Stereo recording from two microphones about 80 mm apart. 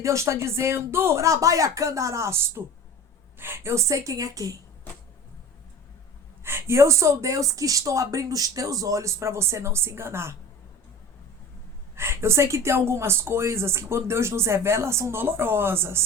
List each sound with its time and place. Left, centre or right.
0.0 s speech: right
6.4 s speech: right
11.9 s speech: right